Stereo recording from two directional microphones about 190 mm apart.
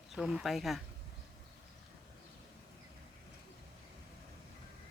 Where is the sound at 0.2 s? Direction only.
5° right (ahead or behind).